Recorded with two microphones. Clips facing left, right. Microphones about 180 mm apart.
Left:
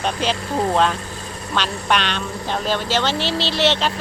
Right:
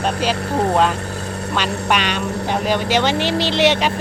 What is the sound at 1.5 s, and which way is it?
Speech, 10° right (ahead or behind).